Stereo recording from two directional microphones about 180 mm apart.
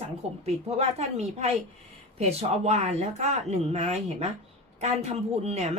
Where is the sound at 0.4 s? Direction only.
35° right (ahead or behind).